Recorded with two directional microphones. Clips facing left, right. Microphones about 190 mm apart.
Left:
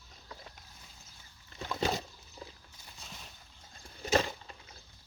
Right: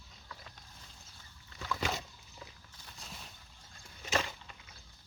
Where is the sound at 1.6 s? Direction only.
30° left (ahead or behind).